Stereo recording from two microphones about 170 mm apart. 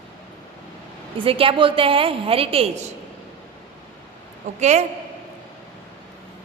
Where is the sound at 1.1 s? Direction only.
30° right (ahead or behind).